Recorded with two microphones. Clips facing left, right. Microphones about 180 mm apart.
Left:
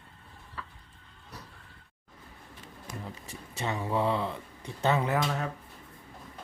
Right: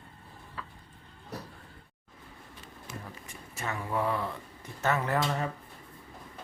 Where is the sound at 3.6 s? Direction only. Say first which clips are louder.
Left 3 dB; 25° left (ahead or behind).